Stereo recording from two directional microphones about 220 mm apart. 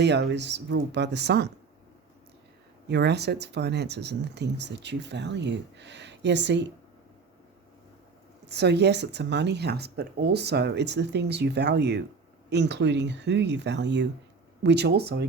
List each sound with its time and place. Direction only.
0.0 s speech: 50° right (ahead or behind)
2.9 s speech: 50° right (ahead or behind)
8.4 s speech: 50° right (ahead or behind)